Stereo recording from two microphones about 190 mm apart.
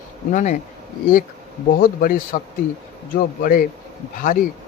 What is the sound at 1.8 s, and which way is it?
A man's voice, 45° left (ahead or behind).